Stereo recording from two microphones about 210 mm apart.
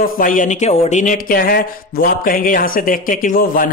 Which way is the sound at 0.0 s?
40° left (ahead or behind).